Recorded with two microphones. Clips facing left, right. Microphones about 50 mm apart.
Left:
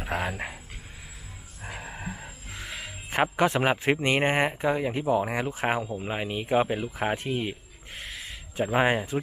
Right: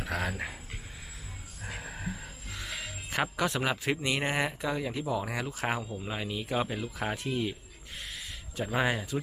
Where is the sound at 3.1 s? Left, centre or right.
Left.